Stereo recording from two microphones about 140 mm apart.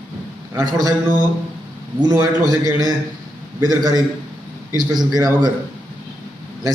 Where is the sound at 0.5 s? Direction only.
25° right (ahead or behind).